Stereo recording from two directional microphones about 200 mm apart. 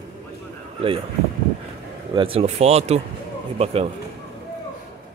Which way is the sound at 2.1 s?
25° right (ahead or behind).